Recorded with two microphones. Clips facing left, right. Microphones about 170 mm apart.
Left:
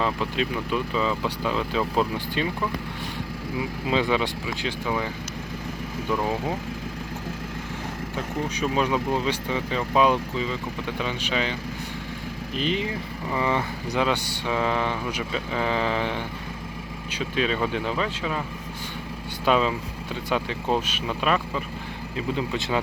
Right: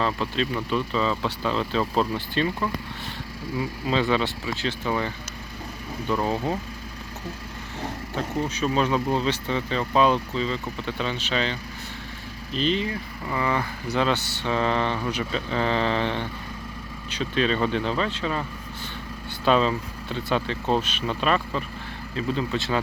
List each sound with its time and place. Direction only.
0.0 s speech: 15° left (ahead or behind)
3.8 s speech: 15° left (ahead or behind)
8.4 s speech: 10° left (ahead or behind)
12.5 s speech: 15° left (ahead or behind)
19.5 s speech: 10° left (ahead or behind)